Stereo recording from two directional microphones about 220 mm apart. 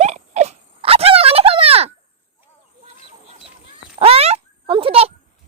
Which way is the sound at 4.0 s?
30° right (ahead or behind).